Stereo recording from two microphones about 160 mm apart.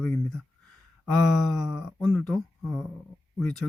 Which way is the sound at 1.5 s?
Centre (ahead or behind).